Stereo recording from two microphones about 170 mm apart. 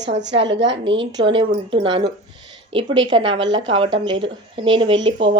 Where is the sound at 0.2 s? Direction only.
90° right.